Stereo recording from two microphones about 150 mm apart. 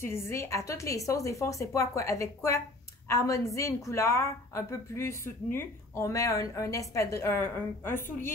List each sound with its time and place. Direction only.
0.0 s a woman's voice: 20° left (ahead or behind)